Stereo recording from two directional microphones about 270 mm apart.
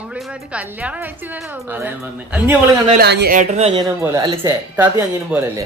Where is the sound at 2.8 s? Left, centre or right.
Right; by 5.6 s centre.